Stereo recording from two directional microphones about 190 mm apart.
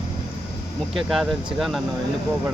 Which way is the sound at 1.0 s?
Centre (ahead or behind).